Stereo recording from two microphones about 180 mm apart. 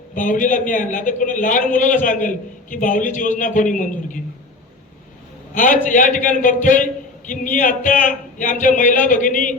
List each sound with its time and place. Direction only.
0.1 s a man's voice: 45° left (ahead or behind)
5.5 s a man's voice: 45° left (ahead or behind)